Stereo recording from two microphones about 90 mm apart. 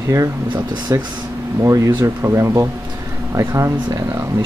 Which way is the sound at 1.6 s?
40° right (ahead or behind).